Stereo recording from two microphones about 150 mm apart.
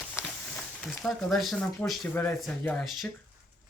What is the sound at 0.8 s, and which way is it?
Speech, centre (ahead or behind).